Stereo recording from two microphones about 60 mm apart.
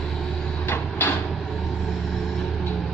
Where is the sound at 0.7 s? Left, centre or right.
Left.